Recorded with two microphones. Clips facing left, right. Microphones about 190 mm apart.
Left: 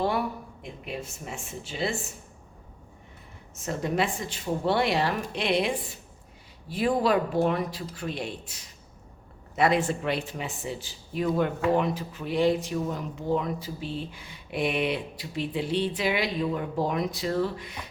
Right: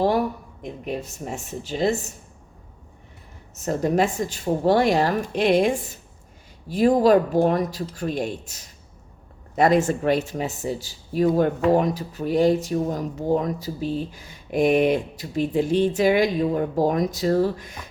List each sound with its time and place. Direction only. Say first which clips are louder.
0.0 s speech: right 6 dB; 40° right (ahead or behind)
3.5 s speech: right 7 dB; 40° right (ahead or behind)